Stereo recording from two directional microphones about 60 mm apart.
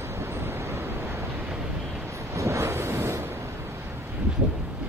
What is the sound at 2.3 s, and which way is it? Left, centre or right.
Waves, right.